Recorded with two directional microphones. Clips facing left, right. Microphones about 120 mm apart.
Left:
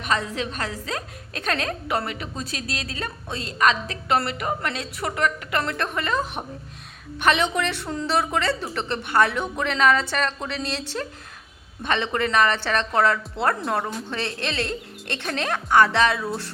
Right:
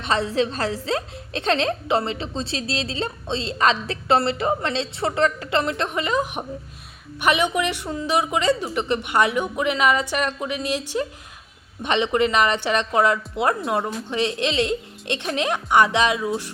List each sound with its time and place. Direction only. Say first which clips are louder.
0.0 s a woman's voice: right 4 dB; 30° right (ahead or behind); by 16.3 s 15° right (ahead or behind)